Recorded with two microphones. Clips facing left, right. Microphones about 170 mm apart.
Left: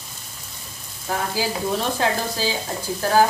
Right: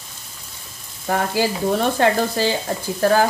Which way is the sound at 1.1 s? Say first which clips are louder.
Right 4 dB; 60° right (ahead or behind).